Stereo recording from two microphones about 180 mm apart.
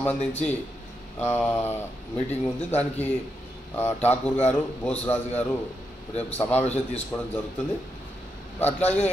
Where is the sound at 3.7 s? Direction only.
10° left (ahead or behind).